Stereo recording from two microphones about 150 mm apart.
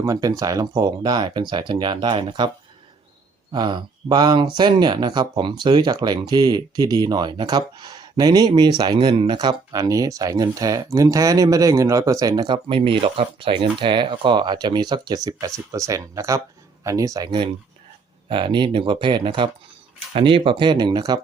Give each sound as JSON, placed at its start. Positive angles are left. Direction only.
{"t": 0.0, "sound": "speech", "side_deg": -25}
{"t": 3.5, "sound": "speech", "side_deg": -30}